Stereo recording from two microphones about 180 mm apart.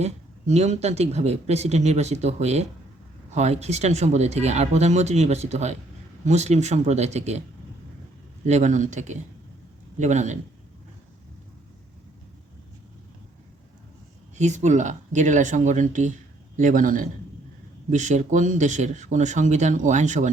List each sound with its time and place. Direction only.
0.0 s speech: 35° right (ahead or behind)
8.4 s speech: 40° right (ahead or behind)
14.3 s speech: 40° right (ahead or behind)